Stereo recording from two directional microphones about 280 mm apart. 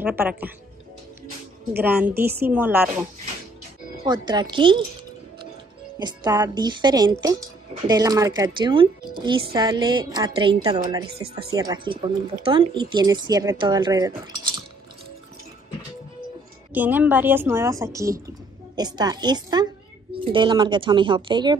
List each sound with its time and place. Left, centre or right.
0.0 s speech: centre
1.8 s a woman's voice: centre
4.0 s speech: centre
5.9 s speech: centre
16.7 s speech: centre